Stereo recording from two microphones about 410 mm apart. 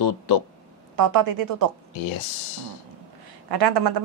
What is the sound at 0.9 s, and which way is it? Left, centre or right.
Speech, right.